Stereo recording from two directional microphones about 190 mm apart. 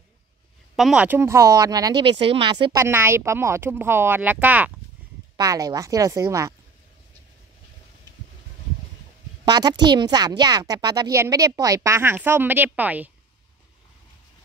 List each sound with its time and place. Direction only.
0.7 s speech: 5° right (ahead or behind)
9.4 s a woman's voice: 20° right (ahead or behind)